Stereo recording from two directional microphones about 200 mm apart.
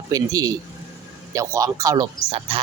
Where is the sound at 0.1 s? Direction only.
20° right (ahead or behind).